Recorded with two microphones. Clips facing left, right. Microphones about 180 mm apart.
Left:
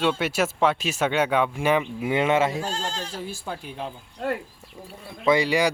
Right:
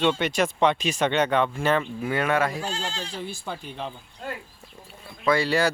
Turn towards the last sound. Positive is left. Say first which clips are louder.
# left 2 dB
turn(degrees=15)  # may be behind; listen again after turning